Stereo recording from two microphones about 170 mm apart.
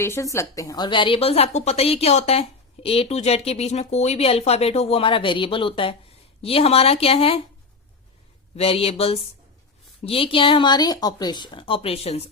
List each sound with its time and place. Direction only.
0.0 s a woman's voice: 15° left (ahead or behind); by 7.4 s 35° left (ahead or behind)
8.5 s a woman's voice: 35° left (ahead or behind)